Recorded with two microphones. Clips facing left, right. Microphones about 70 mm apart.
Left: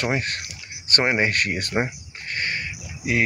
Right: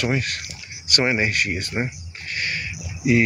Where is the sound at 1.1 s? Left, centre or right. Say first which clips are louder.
Left 2 dB; left.